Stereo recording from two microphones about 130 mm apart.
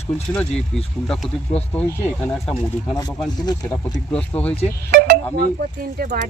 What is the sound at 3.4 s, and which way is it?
Speech, 30° left (ahead or behind).